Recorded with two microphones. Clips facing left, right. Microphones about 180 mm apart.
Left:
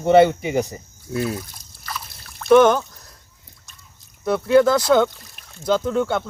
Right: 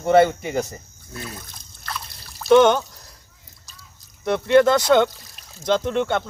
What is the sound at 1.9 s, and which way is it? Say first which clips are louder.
Trickle: even; centre (ahead or behind).